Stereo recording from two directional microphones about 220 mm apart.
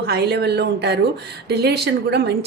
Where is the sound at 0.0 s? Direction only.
45° right (ahead or behind).